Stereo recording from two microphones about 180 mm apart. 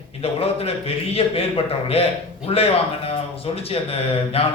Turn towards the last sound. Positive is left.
turn(degrees=35)  # may be behind; listen again after turning